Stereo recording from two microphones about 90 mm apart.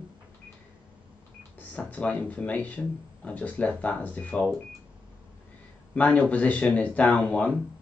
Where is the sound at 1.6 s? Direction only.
15° left (ahead or behind).